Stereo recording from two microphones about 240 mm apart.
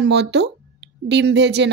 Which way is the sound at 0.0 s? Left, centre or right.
Right.